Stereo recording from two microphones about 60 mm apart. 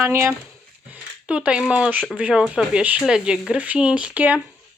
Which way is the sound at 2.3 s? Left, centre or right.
Centre.